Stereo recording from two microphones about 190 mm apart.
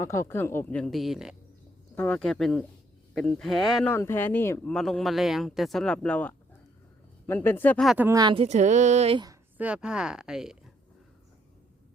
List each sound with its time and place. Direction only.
0.0 s speech: 15° left (ahead or behind)
7.9 s a woman's voice: 10° right (ahead or behind)
9.6 s speech: 5° right (ahead or behind)